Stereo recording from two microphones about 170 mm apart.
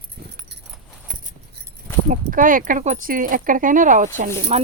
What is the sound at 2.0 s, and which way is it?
Speech, 50° right (ahead or behind).